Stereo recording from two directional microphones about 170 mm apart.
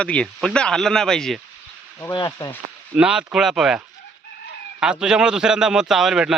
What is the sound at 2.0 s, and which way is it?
Speech, 25° left (ahead or behind).